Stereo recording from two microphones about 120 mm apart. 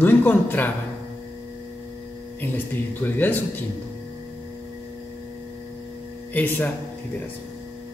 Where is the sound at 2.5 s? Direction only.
15° left (ahead or behind).